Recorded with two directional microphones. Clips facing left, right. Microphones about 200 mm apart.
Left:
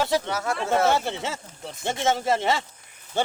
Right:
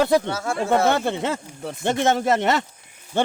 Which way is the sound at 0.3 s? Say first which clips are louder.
Right 3 dB; 25° right (ahead or behind).